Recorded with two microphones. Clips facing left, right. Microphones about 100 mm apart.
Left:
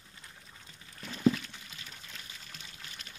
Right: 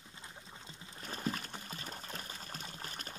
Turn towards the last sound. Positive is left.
turn(degrees=-40)  # may be behind; listen again after turning